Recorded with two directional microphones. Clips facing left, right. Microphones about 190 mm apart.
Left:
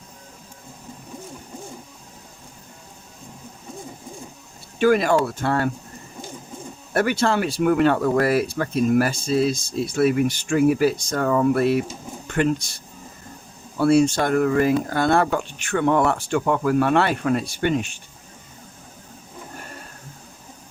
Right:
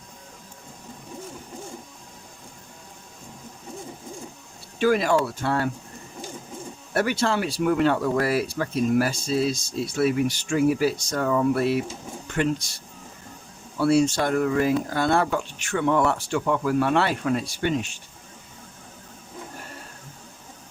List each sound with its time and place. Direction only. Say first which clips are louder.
4.8 s speech: left 3 dB; 55° left (ahead or behind)
6.9 s speech: left 3 dB; 55° left (ahead or behind)
13.7 s speech: left 3 dB; 55° left (ahead or behind)